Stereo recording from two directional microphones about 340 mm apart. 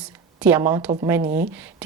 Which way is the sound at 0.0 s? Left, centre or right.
Centre.